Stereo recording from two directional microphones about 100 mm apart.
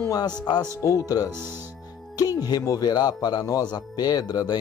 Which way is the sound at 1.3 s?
25° right (ahead or behind).